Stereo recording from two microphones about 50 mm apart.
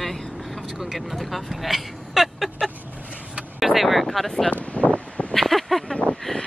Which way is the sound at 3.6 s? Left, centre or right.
Centre.